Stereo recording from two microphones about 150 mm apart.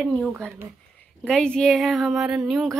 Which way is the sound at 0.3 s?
15° right (ahead or behind).